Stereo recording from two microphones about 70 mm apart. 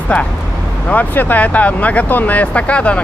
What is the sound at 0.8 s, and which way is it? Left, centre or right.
Speech, left.